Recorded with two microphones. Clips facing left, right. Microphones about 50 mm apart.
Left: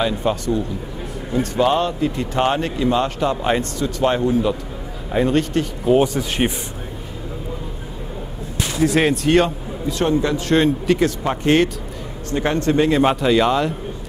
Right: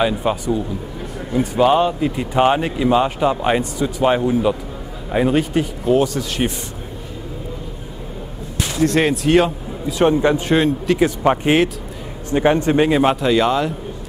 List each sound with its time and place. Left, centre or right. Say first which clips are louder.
0.0 s a man's voice: right 2 dB; centre
5.9 s speech: left 1 dB; left
8.8 s speech: even; centre
10.0 s a man's voice: right 4 dB; right
10.5 s speech: even; centre
11.1 s a man's voice: right 2 dB; centre
13.0 s speech: even; centre